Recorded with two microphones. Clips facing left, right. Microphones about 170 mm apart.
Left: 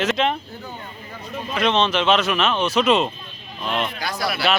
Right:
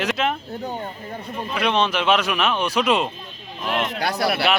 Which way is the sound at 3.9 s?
65° right (ahead or behind).